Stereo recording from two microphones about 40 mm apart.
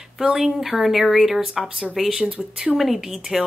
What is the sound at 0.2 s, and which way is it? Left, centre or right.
Speech, centre.